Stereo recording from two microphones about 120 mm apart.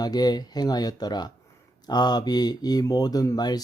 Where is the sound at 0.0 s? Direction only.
35° left (ahead or behind).